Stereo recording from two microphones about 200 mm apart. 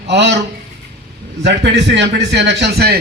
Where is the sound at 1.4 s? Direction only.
60° right (ahead or behind).